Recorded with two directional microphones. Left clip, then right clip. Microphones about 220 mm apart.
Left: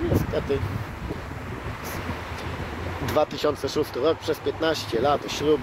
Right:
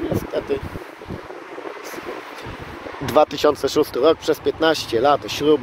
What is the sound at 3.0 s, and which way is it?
Speech, 40° right (ahead or behind).